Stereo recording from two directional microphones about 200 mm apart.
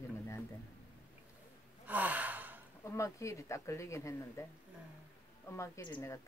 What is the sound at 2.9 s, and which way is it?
Speech, 15° left (ahead or behind).